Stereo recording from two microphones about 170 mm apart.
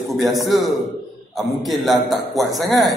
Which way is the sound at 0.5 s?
Centre (ahead or behind).